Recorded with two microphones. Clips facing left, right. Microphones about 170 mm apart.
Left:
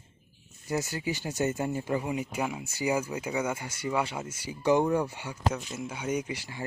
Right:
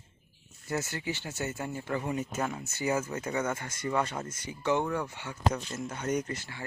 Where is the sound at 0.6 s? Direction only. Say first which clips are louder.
Left 3 dB; 15° left (ahead or behind).